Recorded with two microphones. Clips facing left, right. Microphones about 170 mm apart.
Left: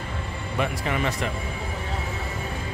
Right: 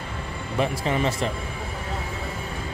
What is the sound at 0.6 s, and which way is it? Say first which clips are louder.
Speech: right 3 dB; 30° right (ahead or behind).